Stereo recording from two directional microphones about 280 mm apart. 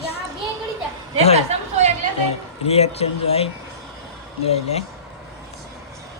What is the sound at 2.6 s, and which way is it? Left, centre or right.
Speech, left.